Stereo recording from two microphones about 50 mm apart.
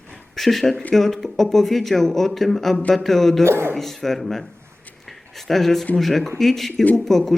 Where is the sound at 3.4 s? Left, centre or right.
Right.